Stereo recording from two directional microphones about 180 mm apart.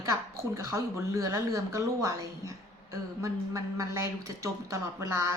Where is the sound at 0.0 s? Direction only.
15° right (ahead or behind).